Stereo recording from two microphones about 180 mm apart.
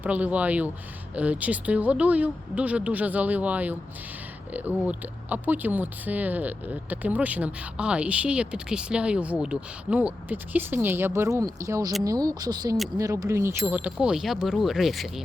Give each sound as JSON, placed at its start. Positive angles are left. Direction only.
{"t": 0.0, "sound": "speech", "side_deg": -10}
{"t": 4.8, "sound": "speech", "side_deg": -10}